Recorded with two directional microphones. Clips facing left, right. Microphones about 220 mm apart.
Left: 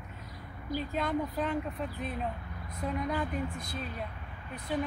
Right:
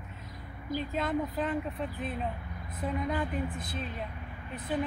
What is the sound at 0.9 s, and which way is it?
Speech, centre (ahead or behind).